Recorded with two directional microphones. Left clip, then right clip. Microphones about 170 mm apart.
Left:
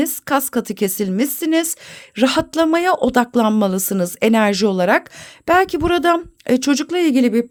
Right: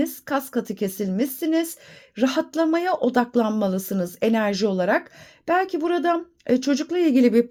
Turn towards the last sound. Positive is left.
turn(degrees=15)  # may be behind; listen again after turning